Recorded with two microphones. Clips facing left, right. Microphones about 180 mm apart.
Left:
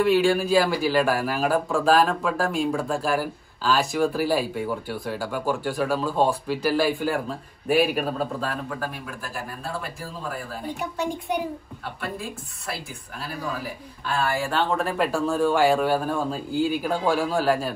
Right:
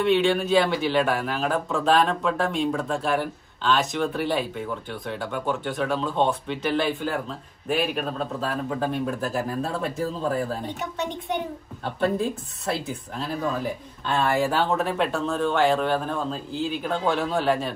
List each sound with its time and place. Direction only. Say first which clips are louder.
0.0 s speech: left 1 dB; centre (ahead or behind)
8.6 s speech: right 5 dB; 25° right (ahead or behind)
10.6 s speech: left 1 dB; centre (ahead or behind)
13.3 s speech: right 4 dB; 5° left (ahead or behind)